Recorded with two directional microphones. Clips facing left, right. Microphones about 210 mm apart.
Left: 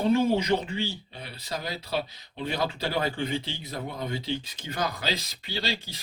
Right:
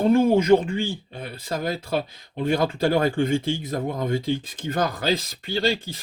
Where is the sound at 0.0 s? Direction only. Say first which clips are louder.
Right 5 dB; 50° right (ahead or behind).